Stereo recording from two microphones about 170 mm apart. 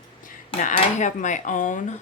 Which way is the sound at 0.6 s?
50° left (ahead or behind).